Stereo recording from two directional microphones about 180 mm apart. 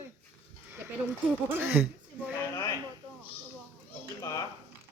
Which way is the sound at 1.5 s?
10° right (ahead or behind).